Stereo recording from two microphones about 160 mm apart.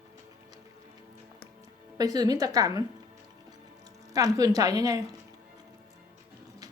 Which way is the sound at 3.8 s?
20° right (ahead or behind).